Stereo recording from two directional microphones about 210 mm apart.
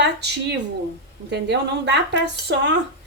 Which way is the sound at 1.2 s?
55° right (ahead or behind).